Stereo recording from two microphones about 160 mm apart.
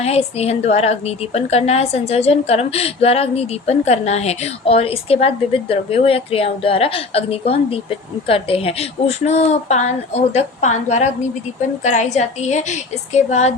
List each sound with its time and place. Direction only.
0.0 s a woman's voice: 40° left (ahead or behind)